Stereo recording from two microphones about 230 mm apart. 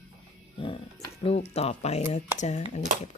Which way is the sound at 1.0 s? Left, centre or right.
Left.